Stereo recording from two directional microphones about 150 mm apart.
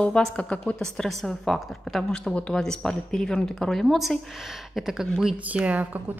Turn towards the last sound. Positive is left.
turn(degrees=-10)  # may be behind; listen again after turning